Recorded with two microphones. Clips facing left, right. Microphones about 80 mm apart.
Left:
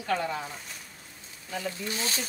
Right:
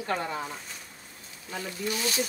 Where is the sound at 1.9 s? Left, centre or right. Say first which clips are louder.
Right 8 dB; left.